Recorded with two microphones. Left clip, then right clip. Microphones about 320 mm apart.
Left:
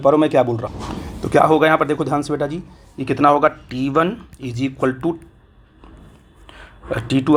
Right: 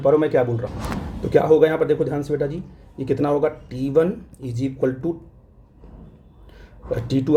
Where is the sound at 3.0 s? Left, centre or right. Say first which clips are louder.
Left 6 dB; centre.